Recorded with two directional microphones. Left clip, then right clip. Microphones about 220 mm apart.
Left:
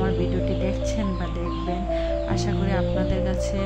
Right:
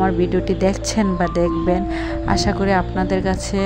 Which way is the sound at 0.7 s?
35° right (ahead or behind).